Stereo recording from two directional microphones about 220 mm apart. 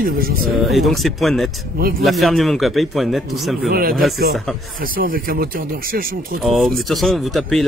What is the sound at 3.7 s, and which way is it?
A man's voice, 45° right (ahead or behind).